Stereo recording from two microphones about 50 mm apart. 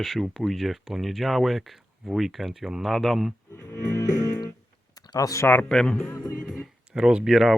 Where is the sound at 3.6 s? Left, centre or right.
Left.